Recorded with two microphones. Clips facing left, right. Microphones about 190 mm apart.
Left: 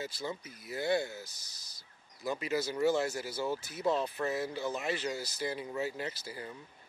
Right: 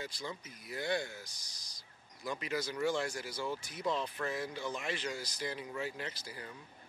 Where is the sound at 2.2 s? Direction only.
25° left (ahead or behind).